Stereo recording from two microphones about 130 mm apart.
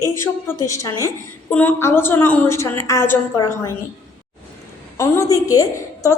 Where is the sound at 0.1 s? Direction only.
20° left (ahead or behind).